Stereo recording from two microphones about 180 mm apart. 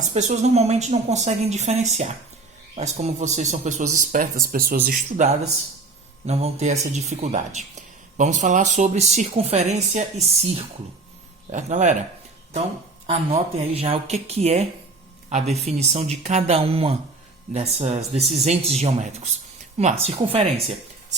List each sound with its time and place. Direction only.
0.0 s speech: 40° right (ahead or behind)
13.1 s speech: 35° right (ahead or behind)
18.2 s speech: centre (ahead or behind)
18.4 s speech: 35° right (ahead or behind)